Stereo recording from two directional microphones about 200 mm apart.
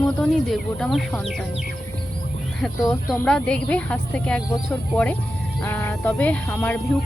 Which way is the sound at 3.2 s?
5° left (ahead or behind).